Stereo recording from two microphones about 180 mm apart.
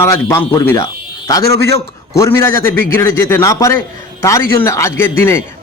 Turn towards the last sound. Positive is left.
turn(degrees=15)  # may be behind; listen again after turning